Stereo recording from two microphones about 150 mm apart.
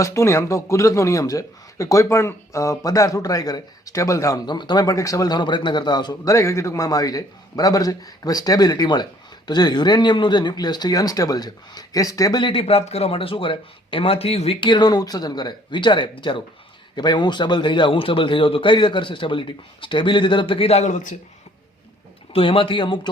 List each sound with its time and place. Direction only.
0.0 s a man's voice: 20° left (ahead or behind); by 21.2 s 55° left (ahead or behind)
22.3 s a man's voice: 35° left (ahead or behind)